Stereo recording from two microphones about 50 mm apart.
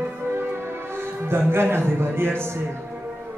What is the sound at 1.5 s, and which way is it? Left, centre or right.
A man's voice, right.